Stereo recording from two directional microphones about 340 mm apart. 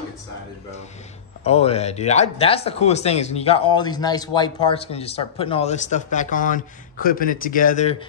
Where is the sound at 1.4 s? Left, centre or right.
Centre.